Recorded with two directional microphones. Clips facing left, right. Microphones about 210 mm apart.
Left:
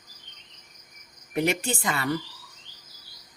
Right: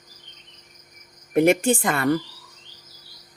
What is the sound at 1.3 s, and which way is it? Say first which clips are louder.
Speech: right 9 dB; 50° right (ahead or behind).